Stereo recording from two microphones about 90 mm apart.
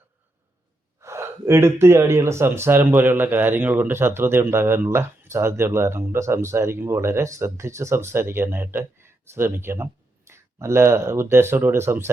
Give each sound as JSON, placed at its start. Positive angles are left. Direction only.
{"t": 1.0, "sound": "speech", "side_deg": -30}